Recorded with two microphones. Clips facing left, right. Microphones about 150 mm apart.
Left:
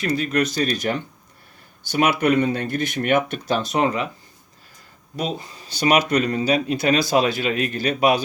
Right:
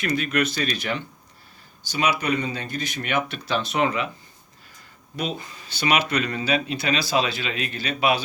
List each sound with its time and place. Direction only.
0.0 s speech: 35° left (ahead or behind)
1.9 s speech: 55° left (ahead or behind); by 4.1 s 40° left (ahead or behind)
5.1 s speech: 35° left (ahead or behind)